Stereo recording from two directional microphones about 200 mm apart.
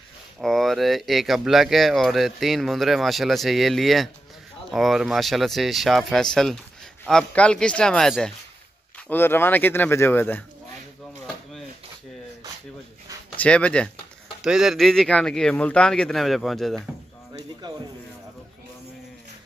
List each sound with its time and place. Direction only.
0.4 s speech: centre (ahead or behind)
13.4 s speech: 5° left (ahead or behind)